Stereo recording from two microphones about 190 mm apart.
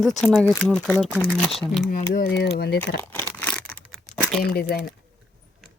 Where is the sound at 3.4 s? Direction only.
5° left (ahead or behind).